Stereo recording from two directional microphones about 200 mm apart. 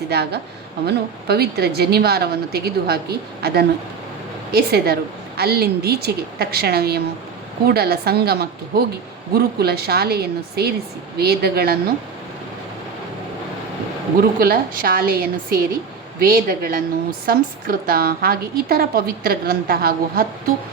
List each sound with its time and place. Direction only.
0.1 s a woman's voice: 55° right (ahead or behind)
14.2 s a woman's voice: 50° right (ahead or behind)